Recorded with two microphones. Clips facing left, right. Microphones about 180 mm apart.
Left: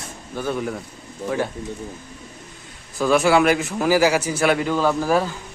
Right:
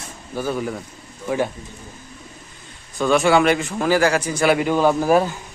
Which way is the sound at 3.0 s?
Centre (ahead or behind).